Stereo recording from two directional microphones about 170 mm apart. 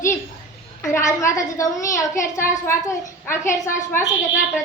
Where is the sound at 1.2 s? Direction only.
20° left (ahead or behind).